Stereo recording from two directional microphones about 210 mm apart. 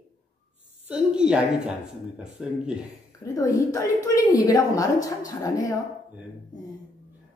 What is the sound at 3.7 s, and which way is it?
Speech, 15° left (ahead or behind).